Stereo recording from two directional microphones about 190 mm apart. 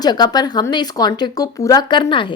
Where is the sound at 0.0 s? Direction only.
20° left (ahead or behind).